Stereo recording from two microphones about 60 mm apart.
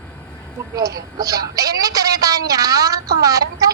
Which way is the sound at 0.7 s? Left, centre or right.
Right.